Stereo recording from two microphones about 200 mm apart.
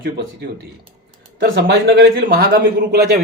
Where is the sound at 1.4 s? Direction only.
60° right (ahead or behind).